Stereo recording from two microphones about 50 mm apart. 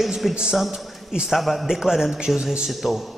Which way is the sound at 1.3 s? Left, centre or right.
Centre.